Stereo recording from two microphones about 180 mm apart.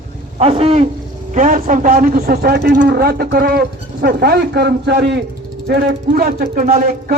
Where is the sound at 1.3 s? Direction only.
45° right (ahead or behind).